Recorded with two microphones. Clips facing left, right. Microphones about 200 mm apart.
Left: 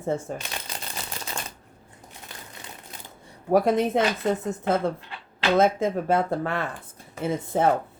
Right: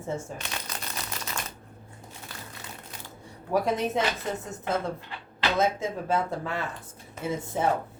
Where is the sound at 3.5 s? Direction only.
55° left (ahead or behind).